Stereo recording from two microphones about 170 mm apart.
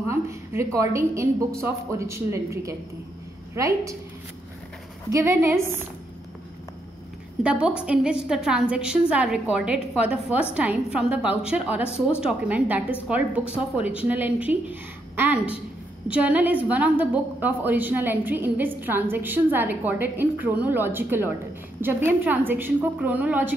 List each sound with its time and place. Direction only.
0.1 s a sound: 15° right (ahead or behind)
0.7 s a woman's voice: 15° right (ahead or behind)
5.1 s a woman's voice: 15° right (ahead or behind)
7.4 s a woman's voice: 5° right (ahead or behind)